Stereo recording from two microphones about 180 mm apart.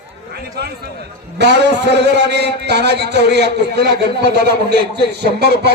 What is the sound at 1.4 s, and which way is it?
A man's voice, 70° right (ahead or behind).